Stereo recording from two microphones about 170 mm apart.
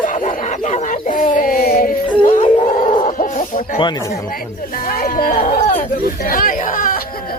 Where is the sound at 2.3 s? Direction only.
50° left (ahead or behind).